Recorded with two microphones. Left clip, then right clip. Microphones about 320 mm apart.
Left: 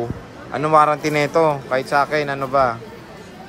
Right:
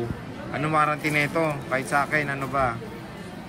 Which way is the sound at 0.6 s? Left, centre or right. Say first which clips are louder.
Left 8 dB; centre.